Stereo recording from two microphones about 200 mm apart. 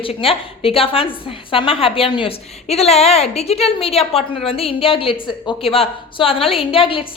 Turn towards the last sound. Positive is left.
turn(degrees=25)  # may be behind; listen again after turning